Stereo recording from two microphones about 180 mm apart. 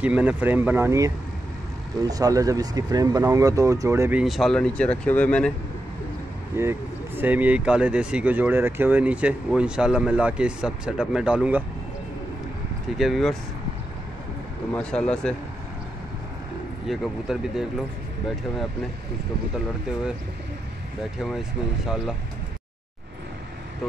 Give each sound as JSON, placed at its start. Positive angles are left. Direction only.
{"t": 0.0, "sound": "speech", "side_deg": -5}
{"t": 4.2, "sound": "speech", "side_deg": 0}
{"t": 6.5, "sound": "speech", "side_deg": -15}
{"t": 12.9, "sound": "speech", "side_deg": 0}
{"t": 14.7, "sound": "speech", "side_deg": 5}
{"t": 16.8, "sound": "speech", "side_deg": 0}
{"t": 21.2, "sound": "speech", "side_deg": 0}